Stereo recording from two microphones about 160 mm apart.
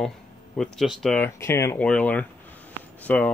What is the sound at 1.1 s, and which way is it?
Speech, 15° left (ahead or behind).